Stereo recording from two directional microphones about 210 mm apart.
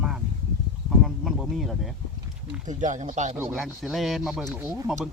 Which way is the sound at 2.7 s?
35° right (ahead or behind).